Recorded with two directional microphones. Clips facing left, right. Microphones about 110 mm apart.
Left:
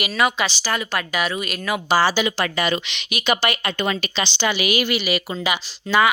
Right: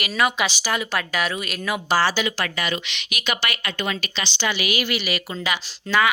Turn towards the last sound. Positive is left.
turn(degrees=10)  # may be behind; listen again after turning